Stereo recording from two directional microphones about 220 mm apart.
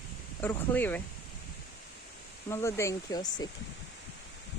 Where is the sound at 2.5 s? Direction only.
10° left (ahead or behind).